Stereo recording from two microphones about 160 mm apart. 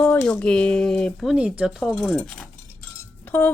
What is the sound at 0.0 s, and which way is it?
A woman's voice, 10° left (ahead or behind).